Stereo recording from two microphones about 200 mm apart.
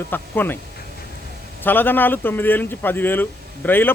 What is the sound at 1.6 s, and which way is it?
Speech, 10° left (ahead or behind).